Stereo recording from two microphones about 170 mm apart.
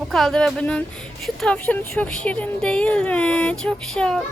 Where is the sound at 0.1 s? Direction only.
Centre (ahead or behind).